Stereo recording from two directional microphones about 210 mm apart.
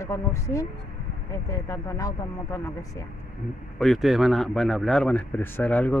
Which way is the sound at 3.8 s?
Centre (ahead or behind).